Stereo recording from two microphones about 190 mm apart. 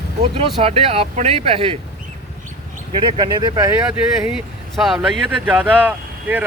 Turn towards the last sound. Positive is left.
turn(degrees=-10)  # may be behind; listen again after turning